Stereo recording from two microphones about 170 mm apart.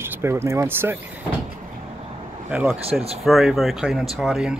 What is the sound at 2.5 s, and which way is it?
Speech, 10° right (ahead or behind).